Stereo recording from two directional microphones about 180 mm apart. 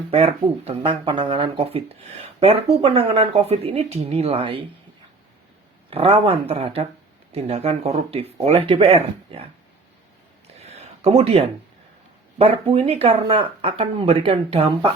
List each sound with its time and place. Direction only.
0.1 s speech: 35° right (ahead or behind)
5.9 s speech: 30° right (ahead or behind)
10.6 s a sound: 35° right (ahead or behind)
12.4 s speech: 35° right (ahead or behind)